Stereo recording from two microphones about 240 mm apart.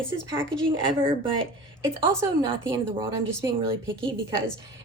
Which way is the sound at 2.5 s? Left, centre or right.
Centre.